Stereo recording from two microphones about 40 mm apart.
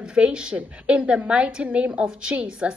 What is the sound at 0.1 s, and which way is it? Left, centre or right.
A woman's voice, right.